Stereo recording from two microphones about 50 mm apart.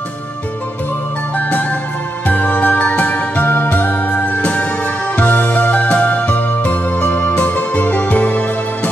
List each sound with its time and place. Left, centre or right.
1.3 s music: left